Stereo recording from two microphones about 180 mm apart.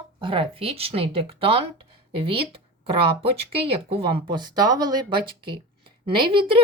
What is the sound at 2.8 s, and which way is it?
Speech, 30° right (ahead or behind).